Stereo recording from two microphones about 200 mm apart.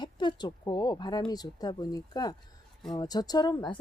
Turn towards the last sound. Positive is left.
turn(degrees=20)  # may be behind; listen again after turning